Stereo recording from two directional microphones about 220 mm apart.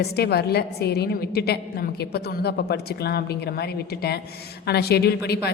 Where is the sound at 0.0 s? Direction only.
45° left (ahead or behind).